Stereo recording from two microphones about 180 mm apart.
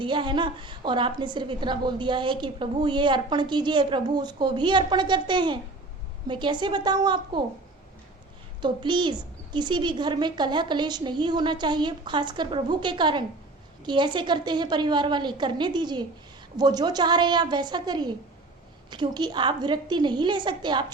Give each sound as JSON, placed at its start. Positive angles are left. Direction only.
{"t": 0.0, "sound": "a woman's voice", "side_deg": -25}
{"t": 8.6, "sound": "a woman's voice", "side_deg": -25}